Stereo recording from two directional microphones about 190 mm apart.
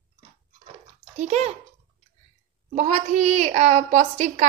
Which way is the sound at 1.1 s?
35° right (ahead or behind).